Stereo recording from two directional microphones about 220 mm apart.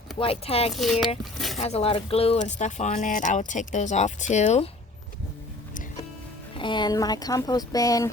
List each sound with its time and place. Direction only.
0.2 s speech: 25° left (ahead or behind)
0.7 s speech: centre (ahead or behind)
1.2 s a sound: centre (ahead or behind)
1.5 s speech: 30° left (ahead or behind)
6.6 s speech: 20° left (ahead or behind)